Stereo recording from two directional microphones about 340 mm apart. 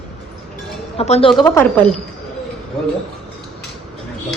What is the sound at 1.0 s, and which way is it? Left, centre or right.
Speech, centre.